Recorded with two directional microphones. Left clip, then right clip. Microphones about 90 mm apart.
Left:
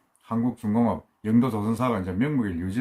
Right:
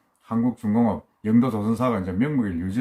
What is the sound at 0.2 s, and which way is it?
Speech, 15° left (ahead or behind).